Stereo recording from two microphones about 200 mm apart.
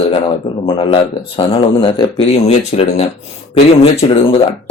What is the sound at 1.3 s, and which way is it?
Speech, 25° left (ahead or behind).